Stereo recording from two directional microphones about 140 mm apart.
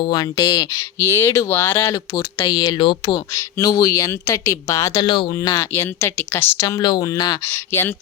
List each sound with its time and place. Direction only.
0.0 s speech: 30° left (ahead or behind)
1.8 s speech: 30° left (ahead or behind)
3.3 s speech: 25° left (ahead or behind)
4.9 s speech: 35° left (ahead or behind); by 6.7 s 15° left (ahead or behind)
6.7 s speech: 30° left (ahead or behind)
7.4 s speech: 15° left (ahead or behind)